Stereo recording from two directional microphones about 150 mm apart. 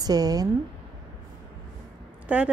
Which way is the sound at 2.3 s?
10° right (ahead or behind).